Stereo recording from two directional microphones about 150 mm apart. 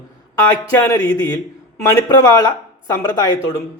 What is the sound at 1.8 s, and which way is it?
A man's voice, 20° left (ahead or behind).